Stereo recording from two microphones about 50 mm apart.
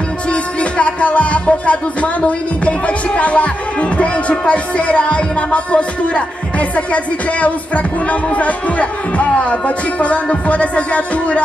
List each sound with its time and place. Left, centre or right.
0.3 s music: left
3.2 s speech: left